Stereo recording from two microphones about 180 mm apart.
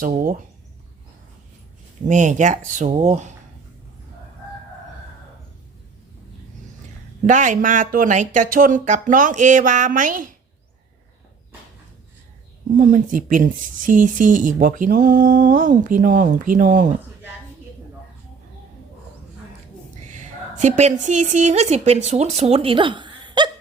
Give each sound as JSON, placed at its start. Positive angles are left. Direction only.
{"t": 0.0, "sound": "speech", "side_deg": -50}
{"t": 2.0, "sound": "speech", "side_deg": -45}
{"t": 7.3, "sound": "speech", "side_deg": -45}
{"t": 12.8, "sound": "speech", "side_deg": -50}
{"t": 20.1, "sound": "a woman's voice", "side_deg": -40}